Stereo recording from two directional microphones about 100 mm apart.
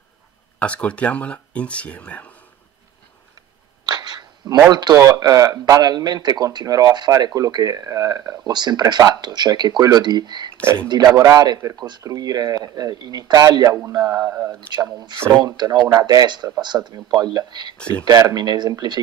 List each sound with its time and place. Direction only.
0.6 s speech: 15° left (ahead or behind)
3.9 s a sound: 45° right (ahead or behind)
4.6 s speech: 45° right (ahead or behind)
4.9 s speech: 35° right (ahead or behind)
11.1 s speech: 35° right (ahead or behind)
14.7 s speech: 45° right (ahead or behind)